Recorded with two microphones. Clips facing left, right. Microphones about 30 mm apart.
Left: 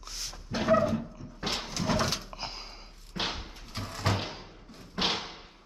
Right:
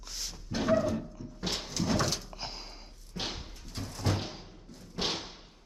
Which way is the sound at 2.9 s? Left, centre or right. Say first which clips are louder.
Left 5 dB; left.